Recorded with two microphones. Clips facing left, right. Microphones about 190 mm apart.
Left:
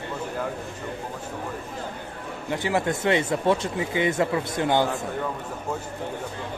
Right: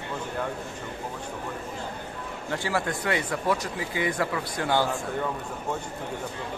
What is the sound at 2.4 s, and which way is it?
Speech, 20° left (ahead or behind).